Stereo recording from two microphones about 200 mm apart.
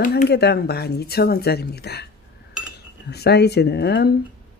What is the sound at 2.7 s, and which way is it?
Cutlery, 55° left (ahead or behind).